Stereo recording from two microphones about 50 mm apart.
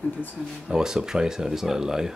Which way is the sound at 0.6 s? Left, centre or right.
Centre.